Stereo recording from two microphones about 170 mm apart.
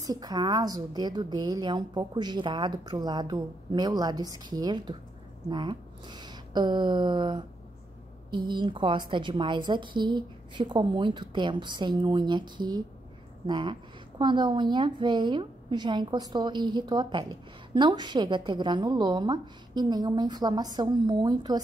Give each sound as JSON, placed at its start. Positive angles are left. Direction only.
{"t": 0.0, "sound": "a woman's voice", "side_deg": -25}